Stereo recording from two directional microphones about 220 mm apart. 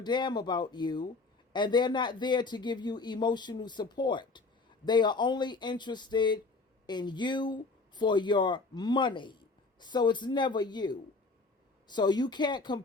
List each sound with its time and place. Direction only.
0.0 s speech: 20° left (ahead or behind)